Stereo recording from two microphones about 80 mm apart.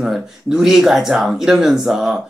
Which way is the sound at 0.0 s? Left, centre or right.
Centre.